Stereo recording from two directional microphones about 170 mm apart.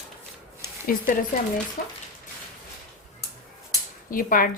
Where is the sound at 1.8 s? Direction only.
60° left (ahead or behind).